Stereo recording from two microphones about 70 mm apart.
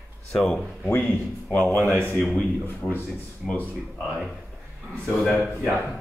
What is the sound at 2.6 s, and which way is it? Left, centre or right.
Speech, left.